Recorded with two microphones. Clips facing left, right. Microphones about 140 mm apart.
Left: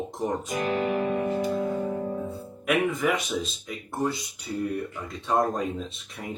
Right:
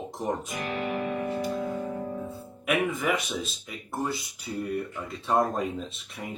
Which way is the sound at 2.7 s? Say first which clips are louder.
Left 2 dB; centre (ahead or behind).